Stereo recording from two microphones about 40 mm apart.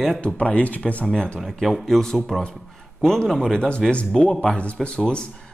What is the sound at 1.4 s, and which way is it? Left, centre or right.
Speech, centre.